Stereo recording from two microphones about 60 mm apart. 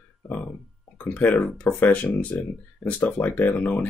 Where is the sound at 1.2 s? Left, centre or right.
Left.